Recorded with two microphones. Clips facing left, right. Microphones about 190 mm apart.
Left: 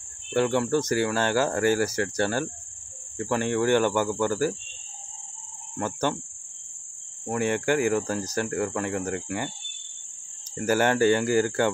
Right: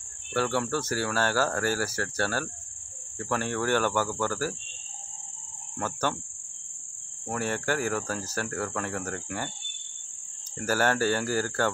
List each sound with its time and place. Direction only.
0.3 s speech: 15° left (ahead or behind)
5.8 s speech: 15° left (ahead or behind)
7.2 s speech: 15° left (ahead or behind)
10.6 s speech: 15° left (ahead or behind)